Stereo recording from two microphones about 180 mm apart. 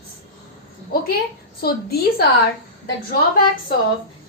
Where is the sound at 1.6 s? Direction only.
60° left (ahead or behind).